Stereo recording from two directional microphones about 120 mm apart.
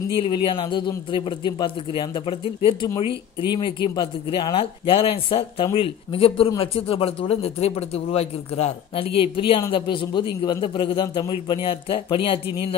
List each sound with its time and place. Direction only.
0.2 s speech: 45° left (ahead or behind)